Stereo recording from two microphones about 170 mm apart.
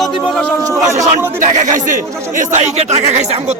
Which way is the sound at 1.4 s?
50° right (ahead or behind).